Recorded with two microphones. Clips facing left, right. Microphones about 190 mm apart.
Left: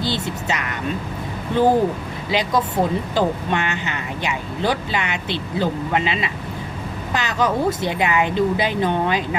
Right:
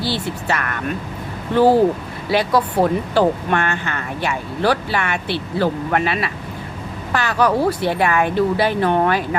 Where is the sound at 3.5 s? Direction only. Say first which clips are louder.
Right 2 dB; 20° left (ahead or behind).